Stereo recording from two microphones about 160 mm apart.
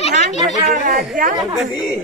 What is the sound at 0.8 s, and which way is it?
Speech, 60° right (ahead or behind).